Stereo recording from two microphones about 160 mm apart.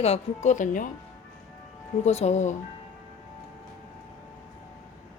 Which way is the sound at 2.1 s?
45° left (ahead or behind).